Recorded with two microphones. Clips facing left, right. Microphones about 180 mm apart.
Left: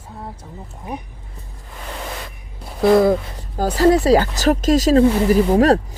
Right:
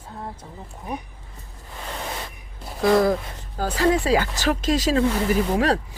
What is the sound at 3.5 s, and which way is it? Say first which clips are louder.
Speech: left 6 dB; 40° left (ahead or behind).